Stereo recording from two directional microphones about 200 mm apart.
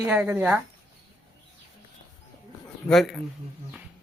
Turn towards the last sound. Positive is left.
turn(degrees=0)  # may be behind; listen again after turning